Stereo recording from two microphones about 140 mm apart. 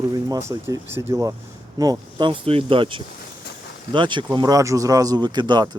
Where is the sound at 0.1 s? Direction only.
25° right (ahead or behind).